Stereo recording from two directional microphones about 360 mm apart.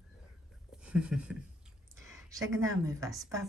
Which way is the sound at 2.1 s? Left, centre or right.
Centre.